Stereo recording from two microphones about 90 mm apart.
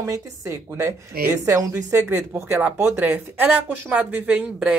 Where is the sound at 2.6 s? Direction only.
20° right (ahead or behind).